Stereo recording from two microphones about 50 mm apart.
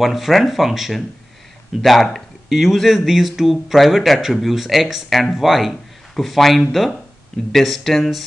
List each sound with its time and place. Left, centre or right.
0.0 s speech: centre